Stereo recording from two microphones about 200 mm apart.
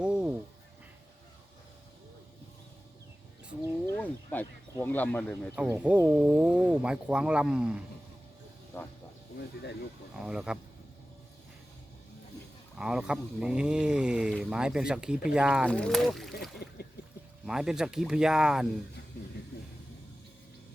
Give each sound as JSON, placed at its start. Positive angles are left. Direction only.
{"t": 0.0, "sound": "a sound", "side_deg": -5}
{"t": 3.9, "sound": "a sound", "side_deg": 10}
{"t": 4.8, "sound": "speech", "side_deg": 10}
{"t": 5.7, "sound": "speech", "side_deg": -10}
{"t": 8.7, "sound": "speech", "side_deg": 10}
{"t": 10.2, "sound": "speech", "side_deg": -5}
{"t": 12.7, "sound": "speech", "side_deg": -5}
{"t": 16.6, "sound": "a sound", "side_deg": 55}
{"t": 17.4, "sound": "speech", "side_deg": -5}